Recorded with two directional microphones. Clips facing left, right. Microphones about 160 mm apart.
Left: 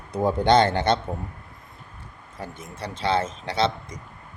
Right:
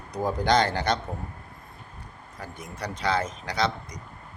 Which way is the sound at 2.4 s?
25° left (ahead or behind).